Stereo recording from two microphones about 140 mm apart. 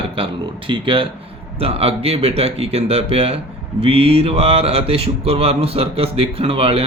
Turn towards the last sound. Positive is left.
turn(degrees=-40)  # may be behind; listen again after turning